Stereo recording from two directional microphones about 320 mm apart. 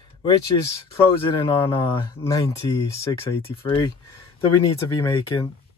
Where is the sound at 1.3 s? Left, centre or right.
Centre.